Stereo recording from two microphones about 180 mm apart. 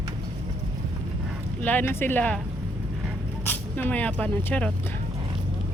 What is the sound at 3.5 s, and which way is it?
Speech, 10° left (ahead or behind).